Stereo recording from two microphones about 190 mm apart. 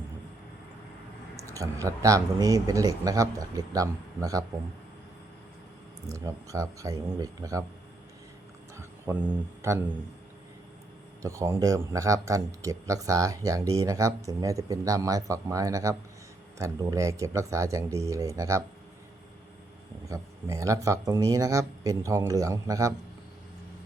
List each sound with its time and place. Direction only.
1.4 s speech: 15° right (ahead or behind)
6.1 s speech: 15° right (ahead or behind)
8.7 s speech: 15° right (ahead or behind)
11.2 s speech: 15° right (ahead or behind)
20.1 s speech: 15° right (ahead or behind)